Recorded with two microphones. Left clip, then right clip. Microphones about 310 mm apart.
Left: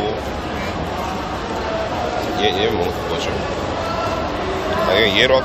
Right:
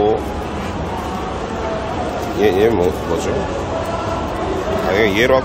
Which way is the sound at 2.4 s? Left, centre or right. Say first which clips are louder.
Right 5 dB; centre.